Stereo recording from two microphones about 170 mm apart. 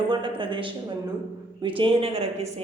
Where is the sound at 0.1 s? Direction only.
30° right (ahead or behind).